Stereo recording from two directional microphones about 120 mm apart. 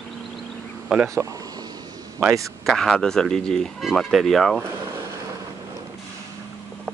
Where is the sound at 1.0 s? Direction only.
25° right (ahead or behind).